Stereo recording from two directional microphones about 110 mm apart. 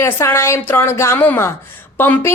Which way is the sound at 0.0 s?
25° left (ahead or behind).